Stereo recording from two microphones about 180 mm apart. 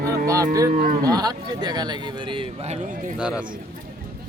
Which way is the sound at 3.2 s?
5° right (ahead or behind).